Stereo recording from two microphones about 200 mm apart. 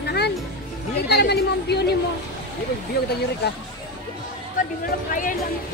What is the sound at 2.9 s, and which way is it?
Speech, 50° left (ahead or behind).